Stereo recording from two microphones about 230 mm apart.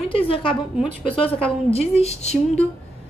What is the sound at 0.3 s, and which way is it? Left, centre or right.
Speech, left.